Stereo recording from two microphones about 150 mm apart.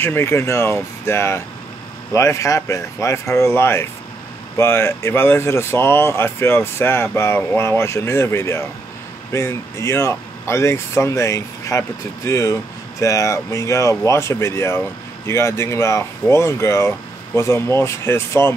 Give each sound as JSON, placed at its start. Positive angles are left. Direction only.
{"t": 0.0, "sound": "speech", "side_deg": 15}